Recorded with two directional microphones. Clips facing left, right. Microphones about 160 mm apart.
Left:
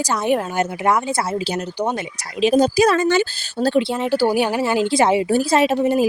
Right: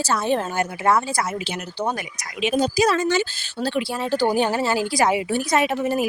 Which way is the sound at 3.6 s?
40° left (ahead or behind).